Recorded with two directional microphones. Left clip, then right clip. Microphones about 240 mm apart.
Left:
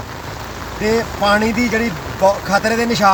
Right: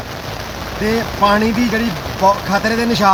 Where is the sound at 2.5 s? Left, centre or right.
Centre.